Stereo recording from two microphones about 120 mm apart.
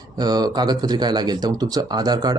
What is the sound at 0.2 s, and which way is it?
Speech, 35° right (ahead or behind).